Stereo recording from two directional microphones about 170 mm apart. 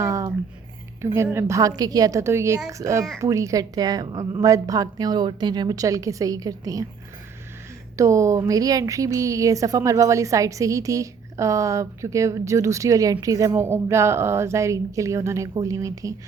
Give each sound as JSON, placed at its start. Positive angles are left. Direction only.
{"t": 0.0, "sound": "a sound", "side_deg": -20}
{"t": 1.0, "sound": "a woman's voice", "side_deg": -15}
{"t": 7.9, "sound": "speech", "side_deg": -20}